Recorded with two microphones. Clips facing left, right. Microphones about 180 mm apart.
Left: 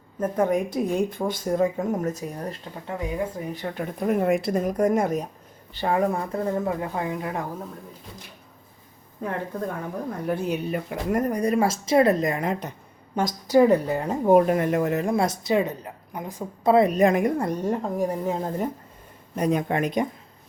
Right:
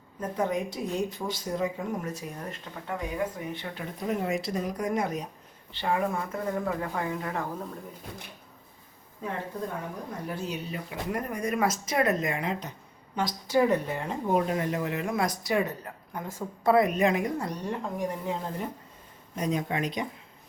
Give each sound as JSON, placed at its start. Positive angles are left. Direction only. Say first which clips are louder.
{"t": 0.2, "sound": "a woman's voice", "louder": "left 6 dB", "side_deg": 50}
{"t": 3.5, "sound": "a woman's voice", "louder": "left 6 dB", "side_deg": 45}
{"t": 6.7, "sound": "speech", "louder": "left 3 dB", "side_deg": 20}
{"t": 10.2, "sound": "speech", "louder": "left 9 dB", "side_deg": 55}
{"t": 17.0, "sound": "a woman's voice", "louder": "left 6 dB", "side_deg": 50}
{"t": 19.4, "sound": "speech", "louder": "left 6 dB", "side_deg": 55}